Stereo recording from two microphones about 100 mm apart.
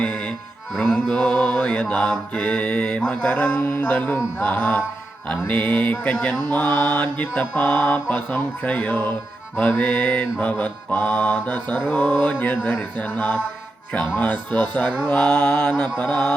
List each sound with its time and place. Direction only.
0.0 s music: 10° left (ahead or behind)
0.7 s mantra: 5° left (ahead or behind)